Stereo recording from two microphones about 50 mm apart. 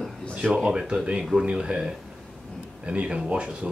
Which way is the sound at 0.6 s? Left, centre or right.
Centre.